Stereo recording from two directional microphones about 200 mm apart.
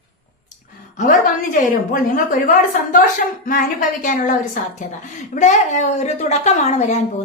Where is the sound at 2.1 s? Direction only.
40° left (ahead or behind).